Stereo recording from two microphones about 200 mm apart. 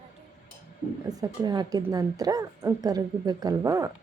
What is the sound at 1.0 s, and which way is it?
A woman's voice, 20° right (ahead or behind).